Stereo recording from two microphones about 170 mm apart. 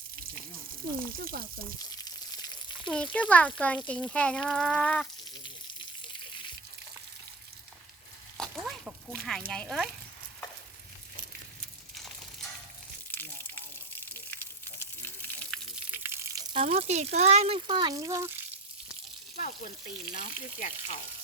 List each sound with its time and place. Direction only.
1.1 s speech: 60° right (ahead or behind)
1.8 s a sound: 20° left (ahead or behind)
2.8 s speech: 5° left (ahead or behind)
8.4 s a sound: centre (ahead or behind)
9.5 s speech: centre (ahead or behind)
13.1 s a sound: 10° left (ahead or behind)
15.7 s frying: 10° right (ahead or behind); by 17.6 s 40° right (ahead or behind)
17.7 s speech: 25° right (ahead or behind)
19.4 s speech: 55° left (ahead or behind)